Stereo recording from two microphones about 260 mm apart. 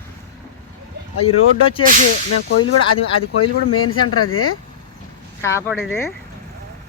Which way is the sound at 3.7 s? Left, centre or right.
Left.